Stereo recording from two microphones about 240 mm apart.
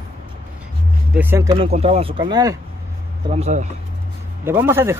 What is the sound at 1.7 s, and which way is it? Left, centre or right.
Speech, right.